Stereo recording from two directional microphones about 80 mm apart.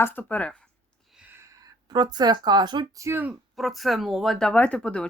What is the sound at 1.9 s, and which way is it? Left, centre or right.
Speech, right.